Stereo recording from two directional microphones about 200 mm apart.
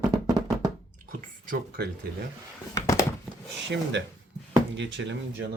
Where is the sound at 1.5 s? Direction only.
50° right (ahead or behind).